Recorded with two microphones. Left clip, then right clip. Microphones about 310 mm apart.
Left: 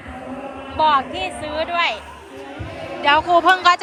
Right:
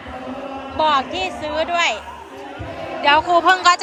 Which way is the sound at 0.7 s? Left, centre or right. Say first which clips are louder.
Left 1 dB; centre.